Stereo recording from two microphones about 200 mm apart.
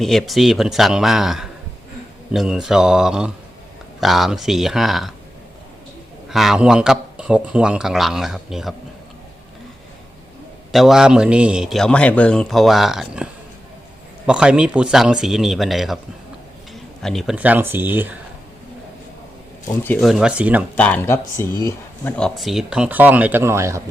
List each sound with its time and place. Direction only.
0.0 s a man's voice: centre (ahead or behind)
6.2 s a man's voice: centre (ahead or behind)
10.7 s a man's voice: centre (ahead or behind)
14.3 s a man's voice: 5° right (ahead or behind)
19.6 s speech: 10° left (ahead or behind)
20.0 s a man's voice: centre (ahead or behind)
20.7 s speech: 10° left (ahead or behind)
22.2 s speech: centre (ahead or behind)